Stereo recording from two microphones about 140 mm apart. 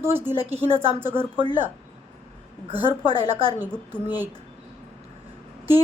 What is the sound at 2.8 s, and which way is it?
Speech, 40° right (ahead or behind).